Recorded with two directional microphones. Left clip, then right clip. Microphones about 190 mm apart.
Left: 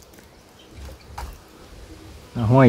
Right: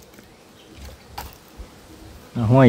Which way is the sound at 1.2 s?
25° right (ahead or behind).